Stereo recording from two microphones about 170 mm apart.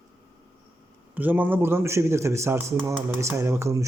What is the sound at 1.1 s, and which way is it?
A man's voice, 10° right (ahead or behind).